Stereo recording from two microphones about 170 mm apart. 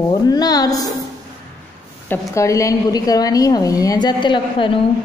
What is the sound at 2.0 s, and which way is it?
Speech, 15° left (ahead or behind).